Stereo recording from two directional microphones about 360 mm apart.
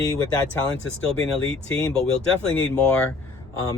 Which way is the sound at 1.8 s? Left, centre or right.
Centre.